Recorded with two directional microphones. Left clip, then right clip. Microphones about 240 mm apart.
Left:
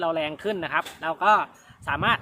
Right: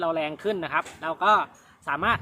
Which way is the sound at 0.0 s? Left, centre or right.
Centre.